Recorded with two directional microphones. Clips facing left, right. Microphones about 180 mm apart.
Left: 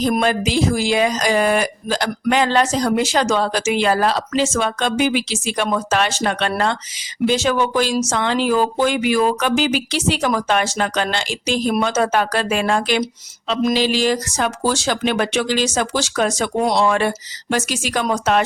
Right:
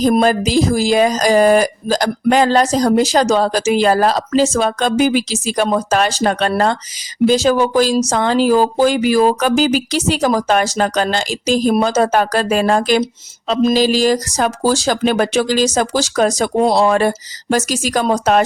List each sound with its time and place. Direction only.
0.0 s speech: 40° right (ahead or behind)
13.5 s mantra: 30° right (ahead or behind)
13.7 s speech: 40° right (ahead or behind)